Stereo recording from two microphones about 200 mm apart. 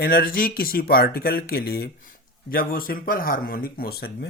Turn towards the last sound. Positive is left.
turn(degrees=50)  # may be behind; listen again after turning